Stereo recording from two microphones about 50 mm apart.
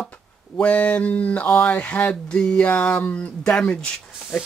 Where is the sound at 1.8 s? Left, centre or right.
Left.